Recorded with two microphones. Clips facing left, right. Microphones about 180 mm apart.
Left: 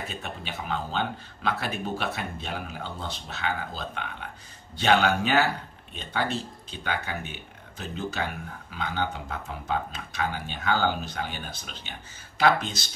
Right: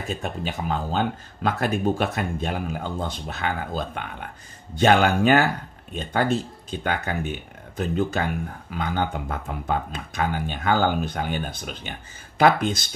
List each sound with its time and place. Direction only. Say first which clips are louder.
0.2 s speech: right 7 dB; 40° right (ahead or behind)